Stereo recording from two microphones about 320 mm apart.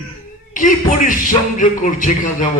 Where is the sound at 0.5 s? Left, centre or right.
Left.